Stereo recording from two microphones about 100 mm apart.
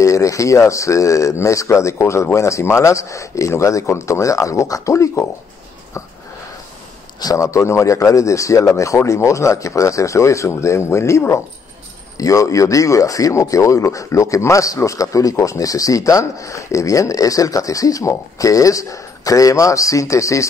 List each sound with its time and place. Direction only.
0.0 s speech: 30° left (ahead or behind)
7.2 s speech: 35° left (ahead or behind)